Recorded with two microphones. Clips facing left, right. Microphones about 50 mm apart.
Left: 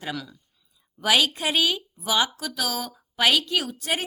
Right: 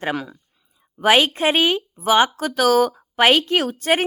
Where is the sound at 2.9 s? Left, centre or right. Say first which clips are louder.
Right 6 dB; right.